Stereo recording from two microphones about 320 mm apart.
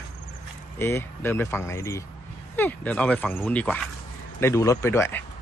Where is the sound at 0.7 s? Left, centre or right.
Centre.